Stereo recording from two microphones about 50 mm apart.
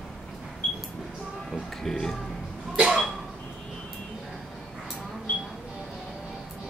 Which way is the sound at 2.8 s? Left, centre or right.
Centre.